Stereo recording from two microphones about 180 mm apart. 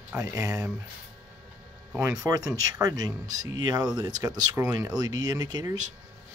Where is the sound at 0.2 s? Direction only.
20° right (ahead or behind).